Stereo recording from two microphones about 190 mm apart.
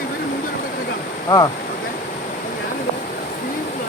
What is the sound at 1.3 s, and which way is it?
Speech, 20° left (ahead or behind).